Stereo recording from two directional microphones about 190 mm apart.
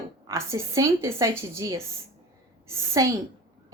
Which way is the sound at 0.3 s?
15° right (ahead or behind).